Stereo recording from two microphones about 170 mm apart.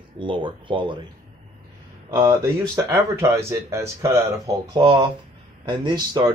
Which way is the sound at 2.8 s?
15° right (ahead or behind).